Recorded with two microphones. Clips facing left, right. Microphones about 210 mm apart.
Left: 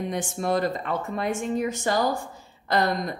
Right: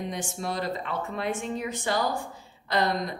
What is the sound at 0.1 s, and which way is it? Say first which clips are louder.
Speech: left 7 dB; 50° left (ahead or behind).